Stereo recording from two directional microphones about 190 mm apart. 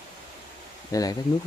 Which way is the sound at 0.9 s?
20° left (ahead or behind).